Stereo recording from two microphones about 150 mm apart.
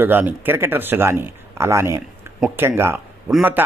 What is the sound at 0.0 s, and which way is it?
Speech, 15° right (ahead or behind).